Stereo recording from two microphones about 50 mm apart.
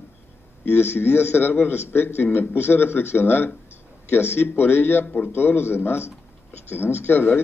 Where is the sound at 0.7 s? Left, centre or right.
Left.